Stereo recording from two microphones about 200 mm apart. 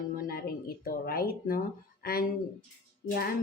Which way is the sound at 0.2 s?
50° left (ahead or behind).